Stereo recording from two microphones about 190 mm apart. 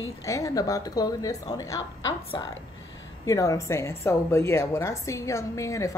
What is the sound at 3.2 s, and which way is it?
Speech, 15° left (ahead or behind).